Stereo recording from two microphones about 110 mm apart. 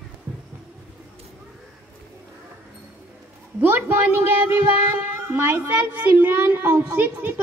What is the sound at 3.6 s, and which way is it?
Speech, 20° right (ahead or behind).